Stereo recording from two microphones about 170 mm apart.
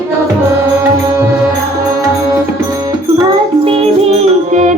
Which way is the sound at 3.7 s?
35° right (ahead or behind).